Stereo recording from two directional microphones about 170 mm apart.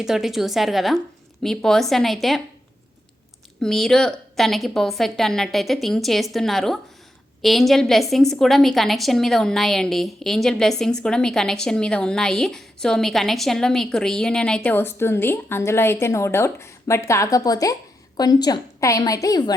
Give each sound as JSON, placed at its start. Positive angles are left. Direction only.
{"t": 0.0, "sound": "a woman's voice", "side_deg": 0}
{"t": 3.6, "sound": "a woman's voice", "side_deg": 0}